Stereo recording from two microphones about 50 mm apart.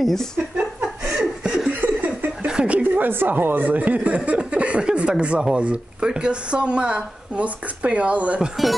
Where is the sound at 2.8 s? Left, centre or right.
Right.